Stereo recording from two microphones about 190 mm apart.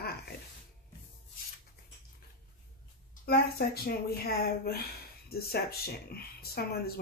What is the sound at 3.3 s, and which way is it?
Speech, 55° left (ahead or behind).